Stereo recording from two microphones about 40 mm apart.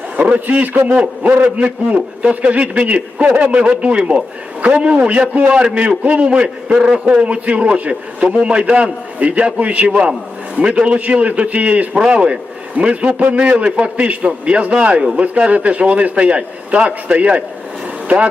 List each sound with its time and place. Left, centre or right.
0.2 s a man's voice: right
10.9 s a man's voice: right
11.9 s a man's voice: right